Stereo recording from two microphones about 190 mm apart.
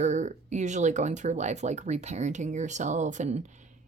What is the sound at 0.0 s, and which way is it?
Speech, 40° right (ahead or behind).